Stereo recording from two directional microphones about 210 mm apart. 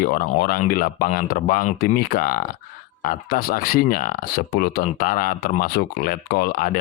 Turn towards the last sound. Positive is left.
turn(degrees=40)  # may be behind; listen again after turning